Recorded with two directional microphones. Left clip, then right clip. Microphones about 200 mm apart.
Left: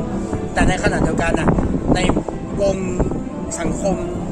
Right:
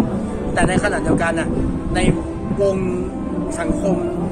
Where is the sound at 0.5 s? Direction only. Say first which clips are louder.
Even; 15° left (ahead or behind).